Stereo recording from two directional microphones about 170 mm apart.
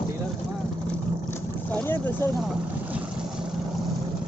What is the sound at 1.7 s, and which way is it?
Boat, 10° left (ahead or behind).